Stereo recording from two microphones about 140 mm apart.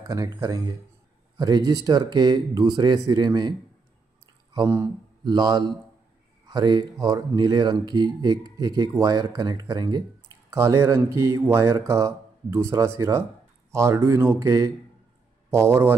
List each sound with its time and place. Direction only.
0.0 s speech: 25° right (ahead or behind)
4.6 s speech: 20° right (ahead or behind)